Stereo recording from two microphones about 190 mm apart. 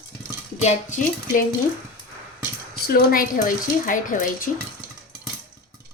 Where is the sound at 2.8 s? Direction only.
50° left (ahead or behind).